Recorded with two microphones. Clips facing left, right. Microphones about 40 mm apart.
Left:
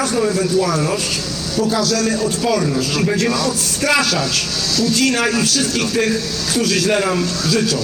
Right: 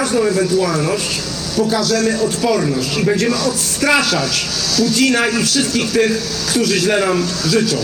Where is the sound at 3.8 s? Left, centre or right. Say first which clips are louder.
Right 2 dB; right.